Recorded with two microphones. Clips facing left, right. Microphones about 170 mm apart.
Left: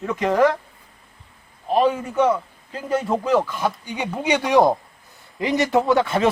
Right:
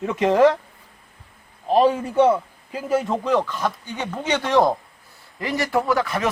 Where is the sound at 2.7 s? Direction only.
Centre (ahead or behind); by 6.3 s 25° left (ahead or behind).